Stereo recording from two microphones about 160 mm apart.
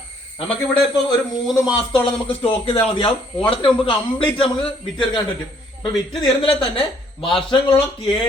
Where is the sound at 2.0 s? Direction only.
35° left (ahead or behind).